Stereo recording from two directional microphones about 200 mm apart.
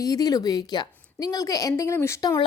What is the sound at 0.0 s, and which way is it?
A woman's voice, 20° left (ahead or behind).